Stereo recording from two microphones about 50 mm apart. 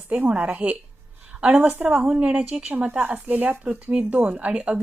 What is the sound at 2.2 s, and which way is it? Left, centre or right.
A woman's voice, right.